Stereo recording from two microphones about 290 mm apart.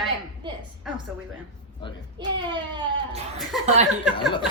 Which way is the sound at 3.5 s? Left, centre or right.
Centre.